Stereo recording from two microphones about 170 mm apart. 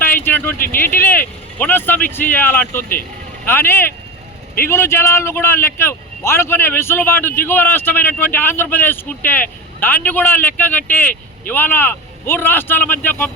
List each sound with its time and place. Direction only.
0.0 s speech: 10° left (ahead or behind)
0.6 s speech: 55° left (ahead or behind)
0.9 s a man's voice: 10° left (ahead or behind)